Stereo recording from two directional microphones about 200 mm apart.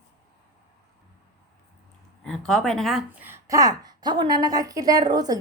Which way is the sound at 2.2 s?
Centre (ahead or behind).